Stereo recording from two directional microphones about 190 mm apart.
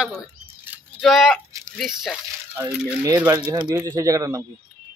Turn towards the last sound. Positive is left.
turn(degrees=-15)  # may be behind; listen again after turning